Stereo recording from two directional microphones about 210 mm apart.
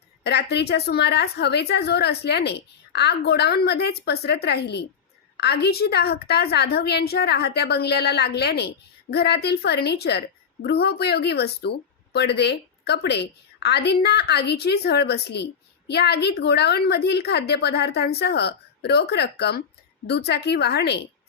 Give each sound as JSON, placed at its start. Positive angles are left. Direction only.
{"t": 0.2, "sound": "a woman's voice", "side_deg": 50}